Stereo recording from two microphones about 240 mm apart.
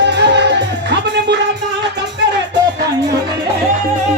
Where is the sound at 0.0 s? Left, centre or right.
Right.